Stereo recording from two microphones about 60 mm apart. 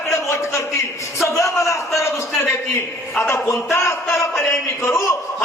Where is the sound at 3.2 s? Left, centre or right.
Left.